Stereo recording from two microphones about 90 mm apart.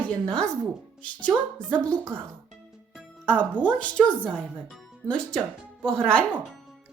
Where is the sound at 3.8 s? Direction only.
15° left (ahead or behind).